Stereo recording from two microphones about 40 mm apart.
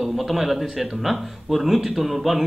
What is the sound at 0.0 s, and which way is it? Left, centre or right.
A man's voice, centre.